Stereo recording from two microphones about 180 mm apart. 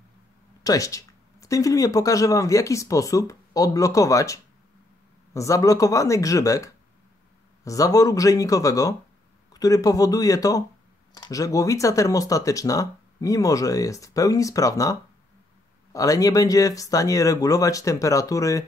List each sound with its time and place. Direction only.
0.7 s speech: 20° left (ahead or behind)